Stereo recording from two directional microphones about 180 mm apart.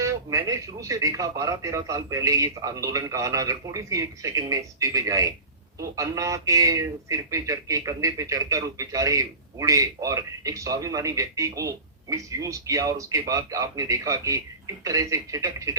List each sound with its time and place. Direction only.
0.0 s speech: 15° right (ahead or behind)